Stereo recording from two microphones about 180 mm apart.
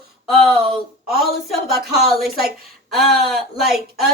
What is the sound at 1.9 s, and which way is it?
A child's voice, centre (ahead or behind).